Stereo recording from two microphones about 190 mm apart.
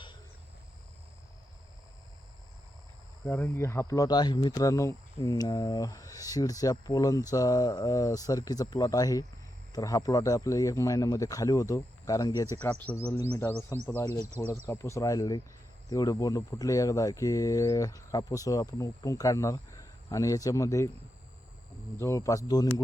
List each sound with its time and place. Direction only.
3.2 s speech: 10° left (ahead or behind)
21.9 s speech: 15° left (ahead or behind)